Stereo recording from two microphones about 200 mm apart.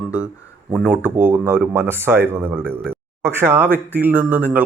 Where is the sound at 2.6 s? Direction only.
5° left (ahead or behind).